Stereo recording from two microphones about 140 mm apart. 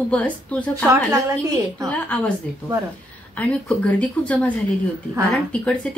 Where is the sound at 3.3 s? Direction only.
10° left (ahead or behind).